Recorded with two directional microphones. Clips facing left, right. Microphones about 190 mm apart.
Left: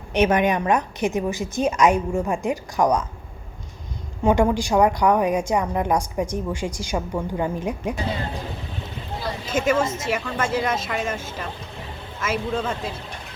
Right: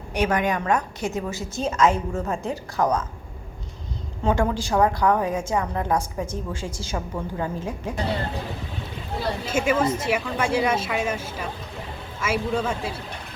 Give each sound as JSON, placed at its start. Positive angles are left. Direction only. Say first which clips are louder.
{"t": 0.1, "sound": "a woman's voice", "louder": "left 4 dB", "side_deg": 20}
{"t": 4.2, "sound": "a woman's voice", "louder": "left 4 dB", "side_deg": 15}
{"t": 9.5, "sound": "a woman's voice", "louder": "left 1 dB", "side_deg": -10}